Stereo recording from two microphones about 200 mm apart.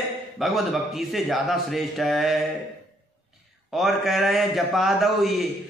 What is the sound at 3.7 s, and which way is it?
A man's voice, centre (ahead or behind).